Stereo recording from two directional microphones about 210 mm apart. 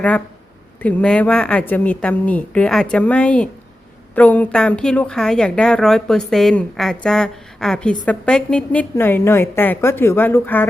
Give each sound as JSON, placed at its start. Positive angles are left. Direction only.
{"t": 0.8, "sound": "a woman's voice", "side_deg": 5}